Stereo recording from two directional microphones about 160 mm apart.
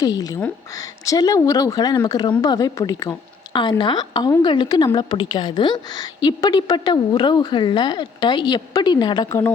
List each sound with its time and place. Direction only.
0.0 s a woman's voice: 25° left (ahead or behind)